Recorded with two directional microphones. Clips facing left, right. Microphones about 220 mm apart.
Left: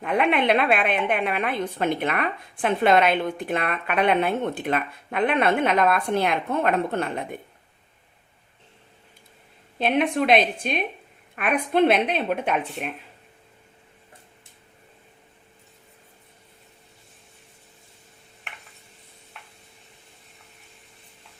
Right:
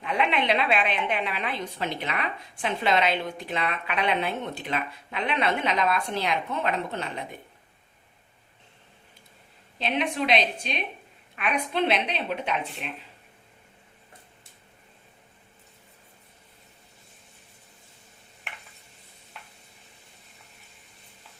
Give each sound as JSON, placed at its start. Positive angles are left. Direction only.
{"t": 0.0, "sound": "a woman's voice", "side_deg": 55}
{"t": 9.7, "sound": "a woman's voice", "side_deg": 55}
{"t": 19.3, "sound": "stir", "side_deg": 0}